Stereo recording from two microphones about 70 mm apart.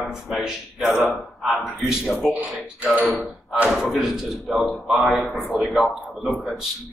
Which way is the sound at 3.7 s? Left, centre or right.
Centre.